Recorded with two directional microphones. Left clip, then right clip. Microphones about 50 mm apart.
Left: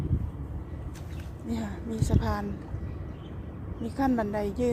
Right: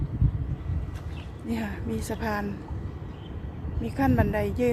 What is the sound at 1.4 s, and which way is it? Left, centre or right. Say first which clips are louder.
Speech: right 3 dB; right.